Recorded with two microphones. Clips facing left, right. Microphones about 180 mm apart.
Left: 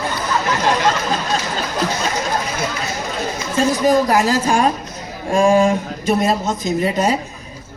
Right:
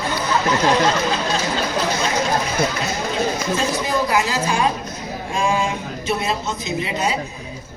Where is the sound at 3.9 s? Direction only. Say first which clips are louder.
Left 7 dB; 40° left (ahead or behind).